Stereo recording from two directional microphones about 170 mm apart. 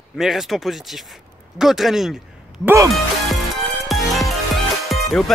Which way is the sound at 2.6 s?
15° right (ahead or behind).